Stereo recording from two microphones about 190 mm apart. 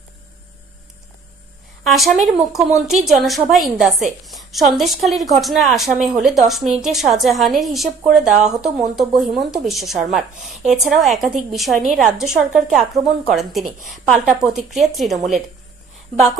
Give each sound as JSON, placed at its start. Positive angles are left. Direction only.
{"t": 1.9, "sound": "speech", "side_deg": 0}
{"t": 8.3, "sound": "a woman's voice", "side_deg": -40}
{"t": 8.5, "sound": "speech", "side_deg": 0}